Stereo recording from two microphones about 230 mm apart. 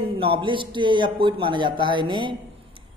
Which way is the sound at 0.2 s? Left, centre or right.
Right.